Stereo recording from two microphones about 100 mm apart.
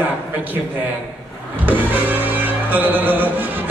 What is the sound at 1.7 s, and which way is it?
Music, 20° right (ahead or behind).